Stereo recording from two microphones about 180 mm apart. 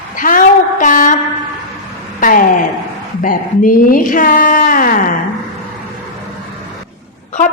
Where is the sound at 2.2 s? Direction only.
50° left (ahead or behind).